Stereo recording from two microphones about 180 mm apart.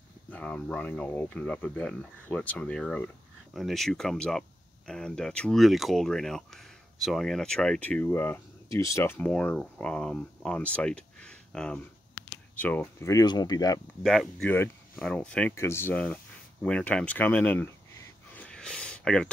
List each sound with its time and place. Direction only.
0.3 s speech: 5° left (ahead or behind)
14.0 s speech: centre (ahead or behind)
18.3 s a sound: 5° left (ahead or behind)